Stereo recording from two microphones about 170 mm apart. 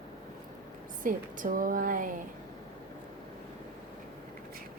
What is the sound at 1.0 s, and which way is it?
A woman's voice, 50° right (ahead or behind).